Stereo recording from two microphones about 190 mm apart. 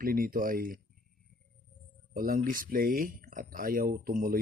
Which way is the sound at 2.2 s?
45° right (ahead or behind).